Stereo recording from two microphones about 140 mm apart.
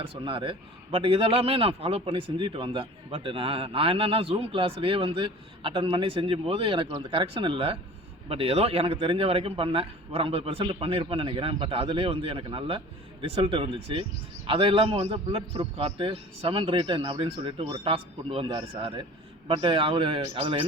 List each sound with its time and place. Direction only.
0.0 s a man's voice: 40° right (ahead or behind)